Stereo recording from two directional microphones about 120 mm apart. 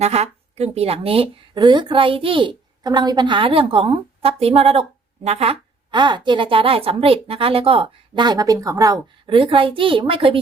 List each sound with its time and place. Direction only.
0.0 s speech: 60° right (ahead or behind)
1.5 s a woman's voice: 40° right (ahead or behind); by 5.5 s 60° right (ahead or behind)
5.9 s a woman's voice: 40° right (ahead or behind)